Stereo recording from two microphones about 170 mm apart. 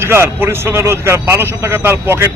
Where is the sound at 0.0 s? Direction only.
15° right (ahead or behind).